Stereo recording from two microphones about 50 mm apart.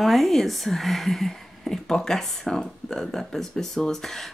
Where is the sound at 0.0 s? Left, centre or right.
Centre.